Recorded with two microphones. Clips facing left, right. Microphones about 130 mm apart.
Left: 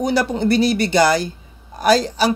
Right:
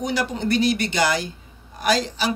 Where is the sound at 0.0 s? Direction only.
35° left (ahead or behind).